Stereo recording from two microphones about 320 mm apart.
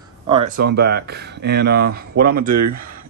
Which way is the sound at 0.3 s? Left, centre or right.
Right.